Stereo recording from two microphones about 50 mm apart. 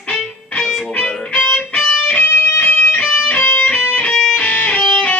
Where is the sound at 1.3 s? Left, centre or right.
Left.